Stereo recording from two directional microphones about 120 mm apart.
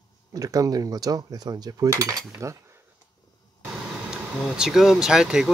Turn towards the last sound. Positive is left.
turn(degrees=-5)  # may be behind; listen again after turning